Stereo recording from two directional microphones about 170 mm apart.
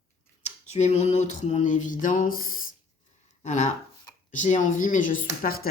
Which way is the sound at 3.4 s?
45° left (ahead or behind).